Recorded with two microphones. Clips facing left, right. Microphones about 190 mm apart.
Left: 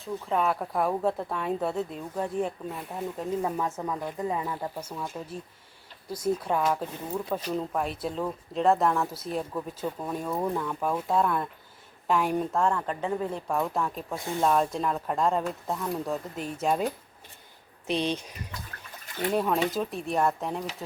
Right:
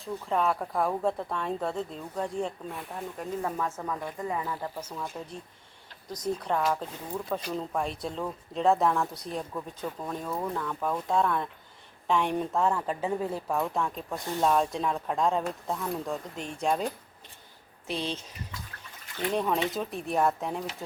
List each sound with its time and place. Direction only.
0.0 s a woman's voice: centre (ahead or behind)
3.4 s a woman's voice: 15° left (ahead or behind)
17.8 s speech: 20° left (ahead or behind)
19.3 s a woman's voice: 5° left (ahead or behind)